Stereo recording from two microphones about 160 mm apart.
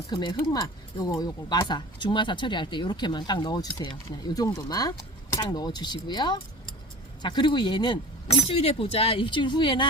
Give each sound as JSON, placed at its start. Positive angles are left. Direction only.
{"t": 0.1, "sound": "speech", "side_deg": 25}
{"t": 8.3, "sound": "speech", "side_deg": 40}